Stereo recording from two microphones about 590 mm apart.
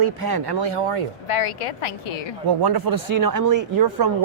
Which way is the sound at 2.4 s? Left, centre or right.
Right.